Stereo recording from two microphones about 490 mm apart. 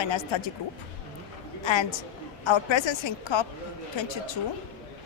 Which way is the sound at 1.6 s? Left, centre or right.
Left.